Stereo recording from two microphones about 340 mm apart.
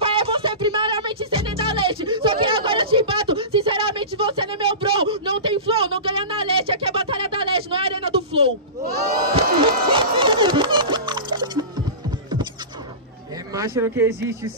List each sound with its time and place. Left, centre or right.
0.0 s music: centre
13.5 s speech: centre